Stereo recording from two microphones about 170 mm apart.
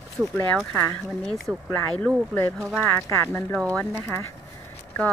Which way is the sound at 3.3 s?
5° left (ahead or behind).